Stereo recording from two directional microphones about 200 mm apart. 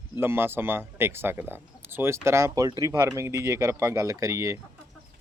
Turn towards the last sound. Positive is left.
turn(degrees=-15)  # may be behind; listen again after turning